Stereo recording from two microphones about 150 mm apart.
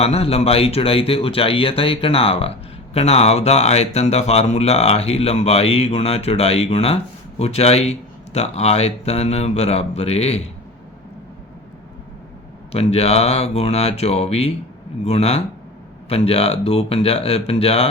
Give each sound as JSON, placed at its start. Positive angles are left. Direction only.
{"t": 0.0, "sound": "speech", "side_deg": 40}
{"t": 12.7, "sound": "speech", "side_deg": 45}